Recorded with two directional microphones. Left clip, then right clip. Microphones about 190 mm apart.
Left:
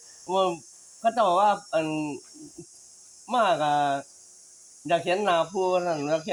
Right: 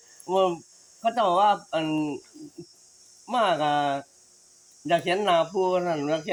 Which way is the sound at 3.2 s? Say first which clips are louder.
Even; 10° left (ahead or behind).